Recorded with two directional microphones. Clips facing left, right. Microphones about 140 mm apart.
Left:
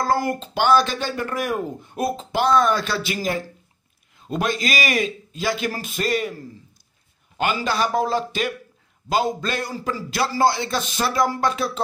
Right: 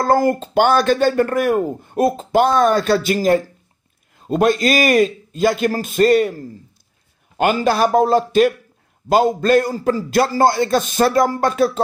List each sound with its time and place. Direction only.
0.0 s speech: 45° right (ahead or behind)
7.3 s speech: 50° right (ahead or behind)